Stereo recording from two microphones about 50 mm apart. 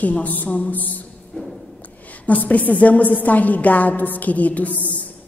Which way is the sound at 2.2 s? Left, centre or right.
Left.